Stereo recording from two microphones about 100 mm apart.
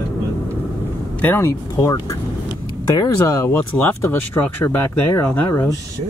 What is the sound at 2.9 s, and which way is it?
Speech, 35° left (ahead or behind).